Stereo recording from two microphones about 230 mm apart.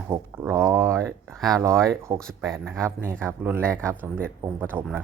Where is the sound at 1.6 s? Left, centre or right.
Centre.